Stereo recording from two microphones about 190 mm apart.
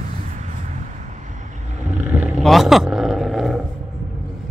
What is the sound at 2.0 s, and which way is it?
Roar, 5° right (ahead or behind).